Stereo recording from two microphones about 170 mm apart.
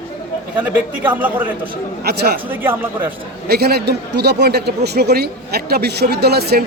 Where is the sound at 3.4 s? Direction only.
70° right (ahead or behind).